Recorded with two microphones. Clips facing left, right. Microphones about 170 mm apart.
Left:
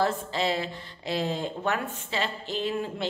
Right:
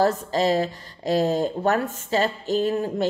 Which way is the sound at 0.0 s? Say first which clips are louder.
Right 6 dB; 40° right (ahead or behind).